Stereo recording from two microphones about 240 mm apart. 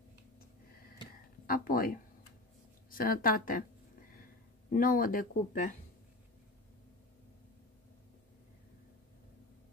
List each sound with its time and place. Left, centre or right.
1.4 s speech: left
4.7 s speech: left